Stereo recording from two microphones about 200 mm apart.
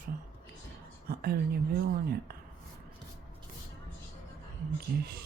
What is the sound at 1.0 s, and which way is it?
Speech, 50° right (ahead or behind).